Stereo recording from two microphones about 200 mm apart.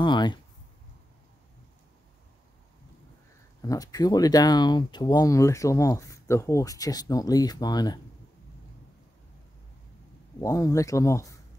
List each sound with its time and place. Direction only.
0.0 s a sound: 25° left (ahead or behind)
3.6 s speech: 20° left (ahead or behind)
10.4 s speech: 15° left (ahead or behind)